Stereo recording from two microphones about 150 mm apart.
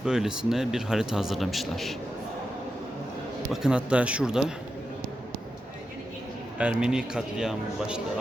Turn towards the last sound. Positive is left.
turn(degrees=-5)  # may be behind; listen again after turning